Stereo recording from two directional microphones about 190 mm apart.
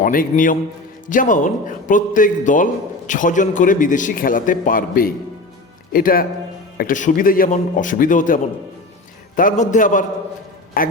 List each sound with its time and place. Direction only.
0.0 s a man's voice: 45° left (ahead or behind)